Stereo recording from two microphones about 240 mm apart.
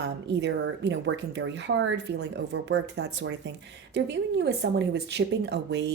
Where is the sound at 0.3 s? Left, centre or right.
Right.